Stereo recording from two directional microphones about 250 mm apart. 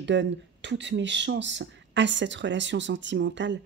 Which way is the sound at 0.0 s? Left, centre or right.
Right.